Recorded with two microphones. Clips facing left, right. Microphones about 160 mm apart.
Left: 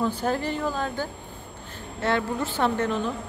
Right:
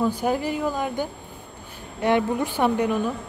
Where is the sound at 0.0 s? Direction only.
10° right (ahead or behind).